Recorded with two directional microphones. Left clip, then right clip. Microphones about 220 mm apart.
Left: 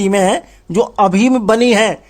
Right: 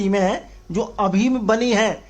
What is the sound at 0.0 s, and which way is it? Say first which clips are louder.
A man's voice: left 7 dB; 45° left (ahead or behind).